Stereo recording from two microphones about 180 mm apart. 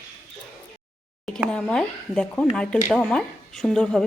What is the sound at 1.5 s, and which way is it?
Speech, 5° left (ahead or behind).